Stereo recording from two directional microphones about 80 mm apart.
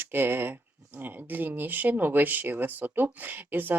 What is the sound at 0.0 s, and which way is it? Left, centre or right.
Speech, right.